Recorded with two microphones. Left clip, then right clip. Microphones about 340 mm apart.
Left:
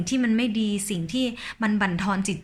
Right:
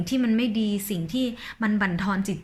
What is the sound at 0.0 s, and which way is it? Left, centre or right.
Speech, centre.